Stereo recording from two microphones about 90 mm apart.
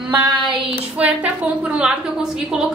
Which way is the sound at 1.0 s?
15° right (ahead or behind).